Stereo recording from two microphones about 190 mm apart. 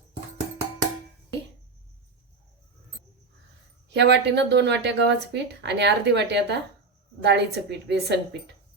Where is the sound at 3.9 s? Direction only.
65° right (ahead or behind).